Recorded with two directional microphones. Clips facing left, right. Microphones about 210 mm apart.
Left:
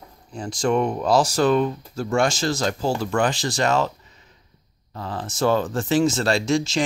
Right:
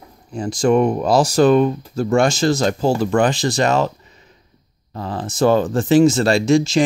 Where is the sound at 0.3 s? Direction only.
10° right (ahead or behind).